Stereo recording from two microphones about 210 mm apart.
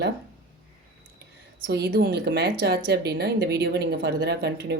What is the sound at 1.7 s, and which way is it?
Speech, 50° right (ahead or behind).